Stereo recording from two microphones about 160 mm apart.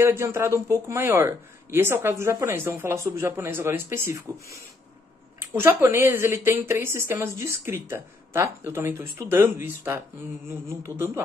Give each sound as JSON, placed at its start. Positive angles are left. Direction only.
{"t": 0.0, "sound": "speech", "side_deg": -15}